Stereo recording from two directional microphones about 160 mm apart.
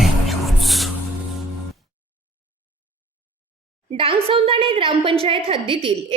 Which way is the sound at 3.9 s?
35° right (ahead or behind).